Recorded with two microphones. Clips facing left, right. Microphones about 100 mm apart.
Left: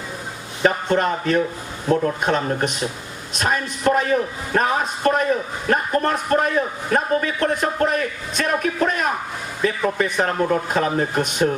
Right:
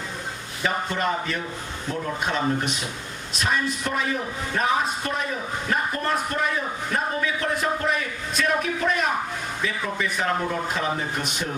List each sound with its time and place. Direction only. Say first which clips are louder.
0.6 s a man's voice: left 7 dB; 45° left (ahead or behind)